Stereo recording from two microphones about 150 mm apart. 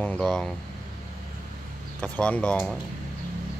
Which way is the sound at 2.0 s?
10° left (ahead or behind).